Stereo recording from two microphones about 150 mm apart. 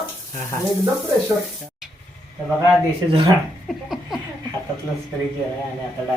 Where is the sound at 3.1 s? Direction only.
35° right (ahead or behind).